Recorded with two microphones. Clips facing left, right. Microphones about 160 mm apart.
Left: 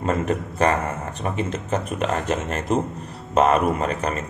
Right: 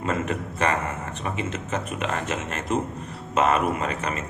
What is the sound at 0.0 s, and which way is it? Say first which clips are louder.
A man's voice: left 4 dB; 35° left (ahead or behind).